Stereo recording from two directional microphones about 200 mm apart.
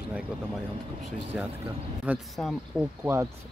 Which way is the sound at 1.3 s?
5° right (ahead or behind).